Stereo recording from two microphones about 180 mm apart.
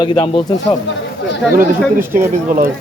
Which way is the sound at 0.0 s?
25° left (ahead or behind).